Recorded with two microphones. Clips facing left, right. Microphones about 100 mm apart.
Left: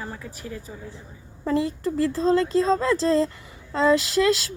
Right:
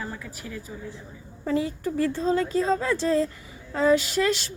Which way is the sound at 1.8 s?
90° left.